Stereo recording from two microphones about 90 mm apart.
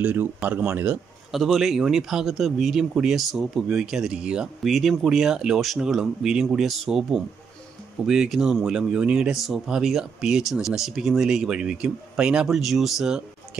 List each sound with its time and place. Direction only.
0.0 s speech: 20° right (ahead or behind)
1.3 s speech: centre (ahead or behind)